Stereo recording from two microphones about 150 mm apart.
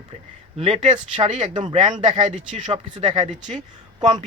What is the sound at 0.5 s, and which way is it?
Speech, 45° right (ahead or behind).